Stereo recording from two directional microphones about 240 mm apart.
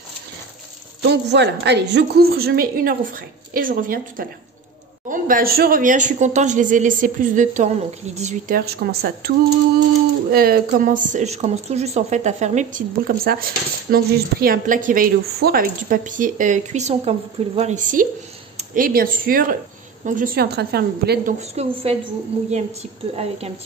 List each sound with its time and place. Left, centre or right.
1.0 s speech: right
10.3 s speech: right
21.4 s a woman's voice: right
23.1 s a woman's voice: right